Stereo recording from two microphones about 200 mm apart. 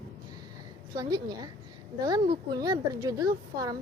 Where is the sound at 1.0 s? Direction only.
20° right (ahead or behind).